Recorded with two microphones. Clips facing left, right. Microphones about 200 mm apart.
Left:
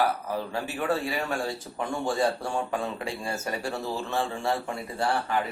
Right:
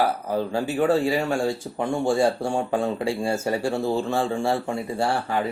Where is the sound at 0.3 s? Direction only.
30° right (ahead or behind).